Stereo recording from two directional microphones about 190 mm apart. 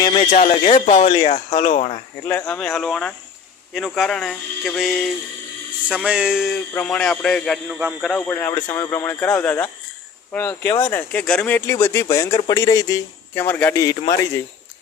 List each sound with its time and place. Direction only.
0.1 s speech: 35° left (ahead or behind)
2.2 s a man's voice: 5° left (ahead or behind)
8.1 s speech: 10° left (ahead or behind)